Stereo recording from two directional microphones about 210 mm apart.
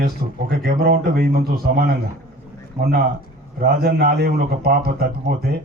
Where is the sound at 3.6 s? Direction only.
45° right (ahead or behind).